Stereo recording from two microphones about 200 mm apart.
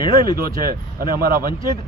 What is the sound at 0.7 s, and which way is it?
Speech, 45° right (ahead or behind).